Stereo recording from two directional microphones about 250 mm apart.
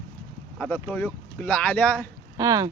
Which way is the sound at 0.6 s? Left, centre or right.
Centre.